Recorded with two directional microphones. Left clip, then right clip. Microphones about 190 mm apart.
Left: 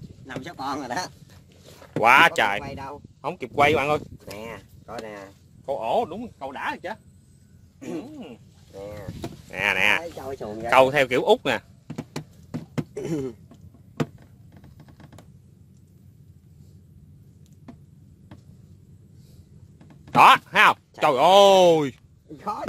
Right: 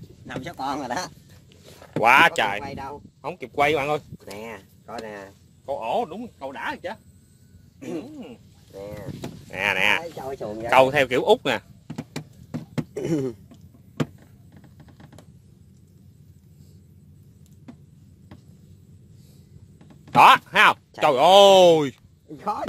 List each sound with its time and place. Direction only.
0.3 s speech: 20° right (ahead or behind)
2.0 s speech: 5° left (ahead or behind)
2.7 s speech: 25° right (ahead or behind)
3.2 s speech: 30° left (ahead or behind)
4.8 s speech: 25° right (ahead or behind)
5.7 s speech: 30° left (ahead or behind)
6.5 s speech: 5° left (ahead or behind)
12.9 s a sound: 55° right (ahead or behind)
20.2 s speech: centre (ahead or behind)